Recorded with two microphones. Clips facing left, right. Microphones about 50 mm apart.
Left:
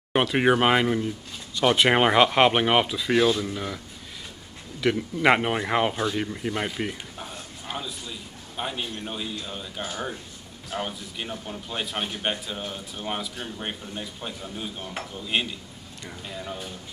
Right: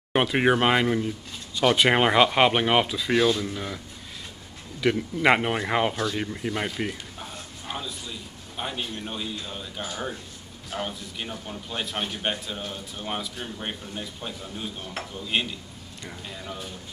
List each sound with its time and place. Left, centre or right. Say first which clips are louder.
0.1 s a man's voice: even; centre